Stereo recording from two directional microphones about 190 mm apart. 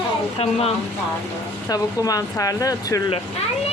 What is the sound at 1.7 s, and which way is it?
Speech, 20° left (ahead or behind).